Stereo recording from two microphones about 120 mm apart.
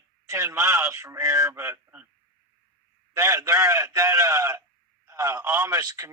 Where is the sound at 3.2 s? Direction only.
25° right (ahead or behind).